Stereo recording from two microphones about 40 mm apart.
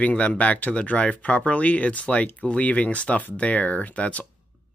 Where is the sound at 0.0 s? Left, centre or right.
Left.